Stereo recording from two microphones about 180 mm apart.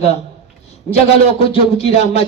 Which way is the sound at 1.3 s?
30° left (ahead or behind).